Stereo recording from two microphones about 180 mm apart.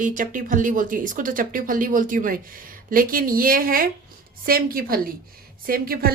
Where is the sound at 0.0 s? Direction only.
50° right (ahead or behind).